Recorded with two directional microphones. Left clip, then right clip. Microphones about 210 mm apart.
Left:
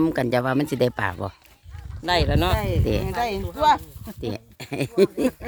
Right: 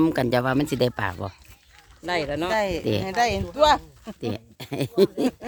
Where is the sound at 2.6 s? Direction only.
45° right (ahead or behind).